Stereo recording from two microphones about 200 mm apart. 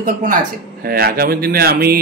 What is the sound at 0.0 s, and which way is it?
A man's voice, 40° right (ahead or behind).